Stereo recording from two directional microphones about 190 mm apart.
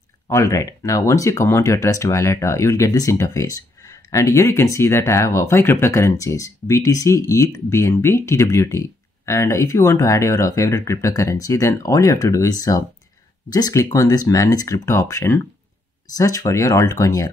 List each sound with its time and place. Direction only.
0.3 s speech: 15° left (ahead or behind)